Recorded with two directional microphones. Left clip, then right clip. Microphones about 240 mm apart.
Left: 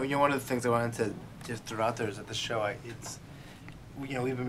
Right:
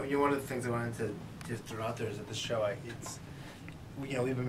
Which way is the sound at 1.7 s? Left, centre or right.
Centre.